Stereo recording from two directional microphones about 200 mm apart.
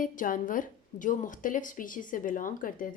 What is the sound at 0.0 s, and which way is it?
A woman's voice, 40° left (ahead or behind).